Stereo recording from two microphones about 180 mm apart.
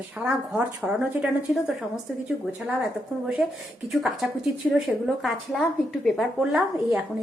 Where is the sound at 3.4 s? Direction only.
Centre (ahead or behind).